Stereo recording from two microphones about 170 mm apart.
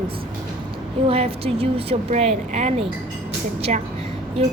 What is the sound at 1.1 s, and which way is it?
Speech, 35° right (ahead or behind).